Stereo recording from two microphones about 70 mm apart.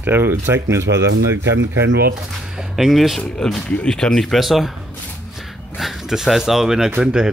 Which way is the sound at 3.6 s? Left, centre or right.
Centre.